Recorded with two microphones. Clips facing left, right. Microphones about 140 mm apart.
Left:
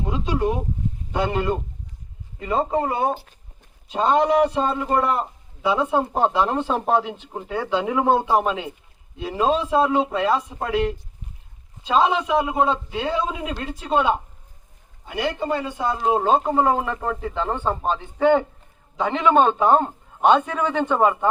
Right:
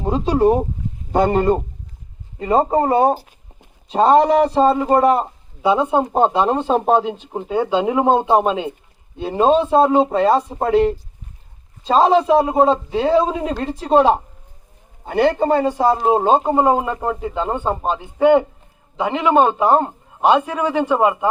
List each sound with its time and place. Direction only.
0.0 s a man's voice: 35° right (ahead or behind)
15.0 s a man's voice: 50° right (ahead or behind); by 21.2 s 10° right (ahead or behind)